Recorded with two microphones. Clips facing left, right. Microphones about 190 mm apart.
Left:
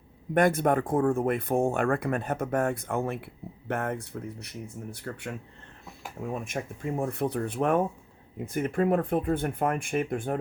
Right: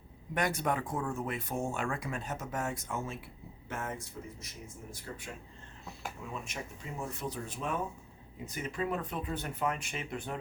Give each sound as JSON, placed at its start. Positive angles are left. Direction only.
{"t": 0.3, "sound": "speech", "side_deg": 50}
{"t": 6.1, "sound": "speech", "side_deg": 50}